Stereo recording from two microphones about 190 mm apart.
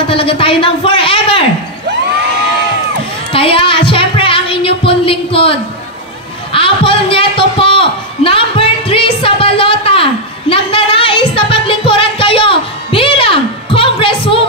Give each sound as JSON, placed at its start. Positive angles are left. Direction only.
{"t": 0.1, "sound": "speech", "side_deg": 30}
{"t": 3.3, "sound": "a sound", "side_deg": 30}
{"t": 10.5, "sound": "music", "side_deg": 30}